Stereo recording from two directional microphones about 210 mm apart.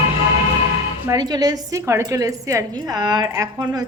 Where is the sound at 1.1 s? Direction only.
20° right (ahead or behind).